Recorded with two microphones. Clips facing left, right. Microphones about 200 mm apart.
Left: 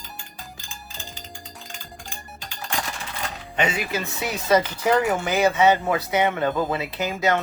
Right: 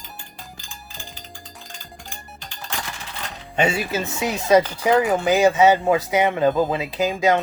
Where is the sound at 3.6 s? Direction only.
25° right (ahead or behind).